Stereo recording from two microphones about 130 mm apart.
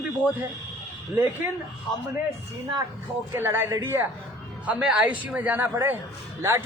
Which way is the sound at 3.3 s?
20° right (ahead or behind).